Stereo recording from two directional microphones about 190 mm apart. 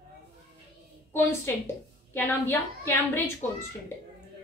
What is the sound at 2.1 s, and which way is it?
A woman's voice, 10° left (ahead or behind).